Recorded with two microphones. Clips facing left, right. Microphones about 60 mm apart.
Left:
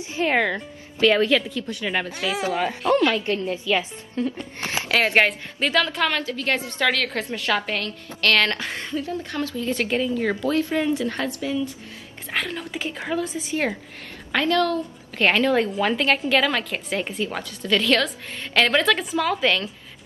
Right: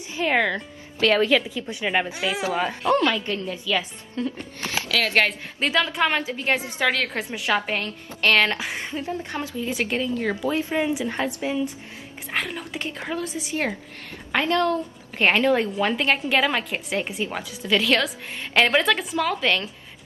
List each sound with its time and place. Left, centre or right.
0.0 s music: left
0.3 s a woman's voice: centre
1.2 s a woman's voice: centre
2.2 s a woman's voice: centre
3.5 s a woman's voice: left
4.8 s a sound: left
5.6 s a woman's voice: centre
6.0 s a woman's voice: right
8.9 s a woman's voice: right; by 10.4 s centre
10.4 s speech: centre
12.3 s a woman's voice: centre
14.3 s speech: right
15.1 s a woman's voice: centre